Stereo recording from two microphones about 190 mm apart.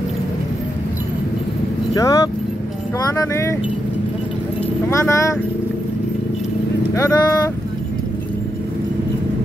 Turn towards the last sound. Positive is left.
turn(degrees=15)  # may be behind; listen again after turning